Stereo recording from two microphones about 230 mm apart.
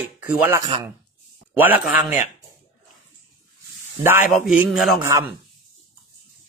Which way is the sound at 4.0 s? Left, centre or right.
Centre.